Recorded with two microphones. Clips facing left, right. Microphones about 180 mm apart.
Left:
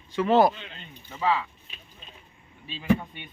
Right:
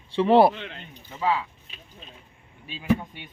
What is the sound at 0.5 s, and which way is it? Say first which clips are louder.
Speech: right 6 dB; 65° right (ahead or behind).